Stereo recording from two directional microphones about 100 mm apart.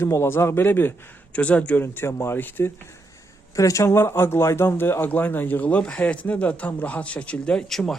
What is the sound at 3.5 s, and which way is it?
A man's voice, 35° left (ahead or behind).